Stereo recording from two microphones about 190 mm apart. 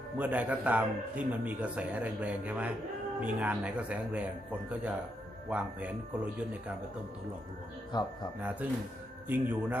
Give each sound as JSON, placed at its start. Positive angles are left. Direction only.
{"t": 0.2, "sound": "speech", "side_deg": -10}
{"t": 7.9, "sound": "speech", "side_deg": 20}
{"t": 8.4, "sound": "speech", "side_deg": -10}